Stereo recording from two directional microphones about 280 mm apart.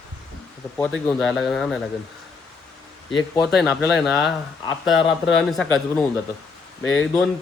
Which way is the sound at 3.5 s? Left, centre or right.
Centre.